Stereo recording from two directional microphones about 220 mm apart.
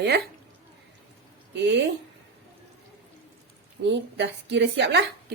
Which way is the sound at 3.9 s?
55° right (ahead or behind).